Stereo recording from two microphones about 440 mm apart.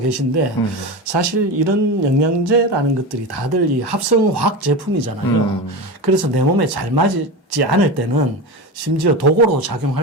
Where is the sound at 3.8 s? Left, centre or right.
Right.